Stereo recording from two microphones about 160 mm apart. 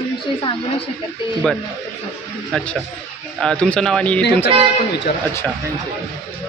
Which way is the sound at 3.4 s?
5° left (ahead or behind).